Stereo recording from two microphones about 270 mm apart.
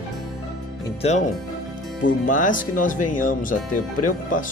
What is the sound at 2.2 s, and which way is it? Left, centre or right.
Speech, left.